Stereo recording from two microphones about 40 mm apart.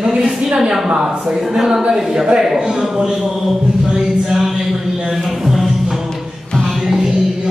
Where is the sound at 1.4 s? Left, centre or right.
Centre.